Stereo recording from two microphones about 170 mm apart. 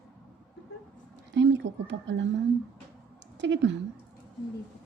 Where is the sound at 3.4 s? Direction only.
90° right.